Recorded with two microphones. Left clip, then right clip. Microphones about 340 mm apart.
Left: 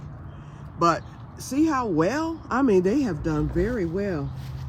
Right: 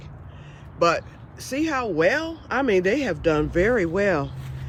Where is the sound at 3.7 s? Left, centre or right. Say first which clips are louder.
Right 6 dB; right.